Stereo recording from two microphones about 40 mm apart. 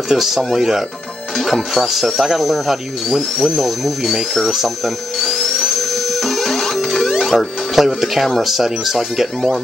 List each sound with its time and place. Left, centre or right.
0.1 s speech: centre
1.3 s speech: centre
5.2 s music: centre
7.3 s speech: centre